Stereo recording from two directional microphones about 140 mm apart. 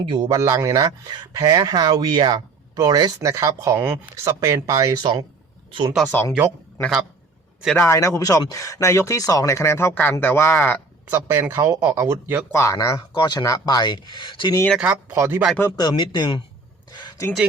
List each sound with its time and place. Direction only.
0.0 s speech: 30° right (ahead or behind)
6.1 s speech: 15° left (ahead or behind)
7.8 s speech: 20° left (ahead or behind)
11.1 s speech: 20° right (ahead or behind)
12.5 s speech: 20° left (ahead or behind)
14.8 s speech: 15° right (ahead or behind)
15.7 s speech: 30° left (ahead or behind)
16.9 s a sound: 30° left (ahead or behind)